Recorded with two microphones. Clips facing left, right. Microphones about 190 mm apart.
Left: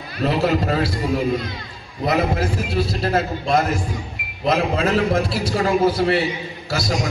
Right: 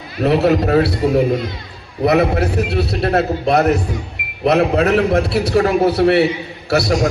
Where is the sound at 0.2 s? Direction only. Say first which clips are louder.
Right 5 dB; 65° right (ahead or behind).